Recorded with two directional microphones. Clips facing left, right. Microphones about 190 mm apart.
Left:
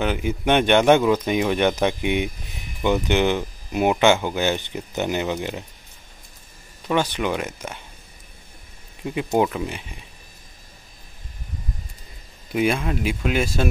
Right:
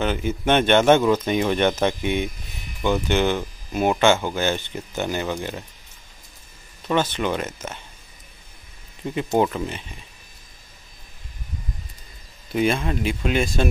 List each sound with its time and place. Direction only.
0.0 s speech: 10° left (ahead or behind)
6.9 s speech: 10° left (ahead or behind)
9.0 s speech: 5° left (ahead or behind)
12.5 s speech: 10° left (ahead or behind)